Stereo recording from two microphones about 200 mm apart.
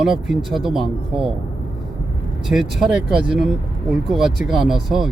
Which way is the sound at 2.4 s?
Centre (ahead or behind).